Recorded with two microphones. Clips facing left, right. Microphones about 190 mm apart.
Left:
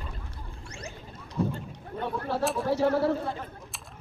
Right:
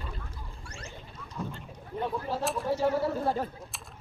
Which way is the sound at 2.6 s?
70° left (ahead or behind).